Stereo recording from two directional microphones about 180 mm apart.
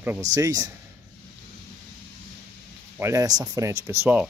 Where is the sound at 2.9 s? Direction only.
15° right (ahead or behind).